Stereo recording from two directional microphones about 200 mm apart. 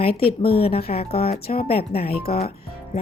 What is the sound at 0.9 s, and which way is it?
Speech, 30° left (ahead or behind).